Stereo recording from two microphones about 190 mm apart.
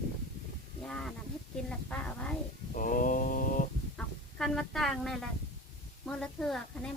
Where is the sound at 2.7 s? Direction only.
45° left (ahead or behind).